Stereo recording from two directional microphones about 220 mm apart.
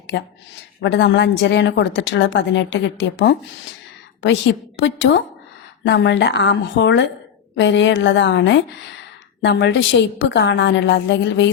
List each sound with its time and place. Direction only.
0.9 s a woman's voice: 50° left (ahead or behind)